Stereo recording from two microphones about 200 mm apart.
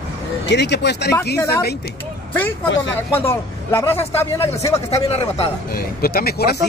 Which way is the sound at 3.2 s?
10° left (ahead or behind).